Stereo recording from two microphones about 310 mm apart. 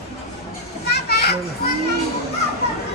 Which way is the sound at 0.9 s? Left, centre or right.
Left.